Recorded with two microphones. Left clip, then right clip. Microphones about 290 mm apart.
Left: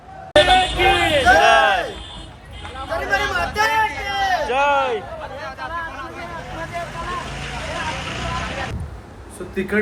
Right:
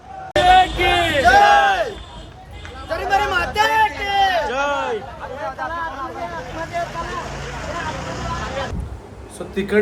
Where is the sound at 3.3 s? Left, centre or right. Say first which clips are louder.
Right 2 dB; centre.